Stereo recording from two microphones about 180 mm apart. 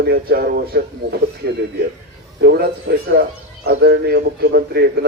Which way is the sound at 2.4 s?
60° right (ahead or behind).